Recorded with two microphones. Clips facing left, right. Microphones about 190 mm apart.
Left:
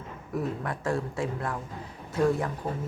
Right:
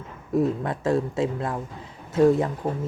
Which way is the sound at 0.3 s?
25° right (ahead or behind).